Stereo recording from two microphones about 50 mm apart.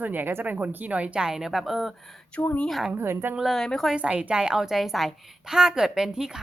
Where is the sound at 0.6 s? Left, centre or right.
Right.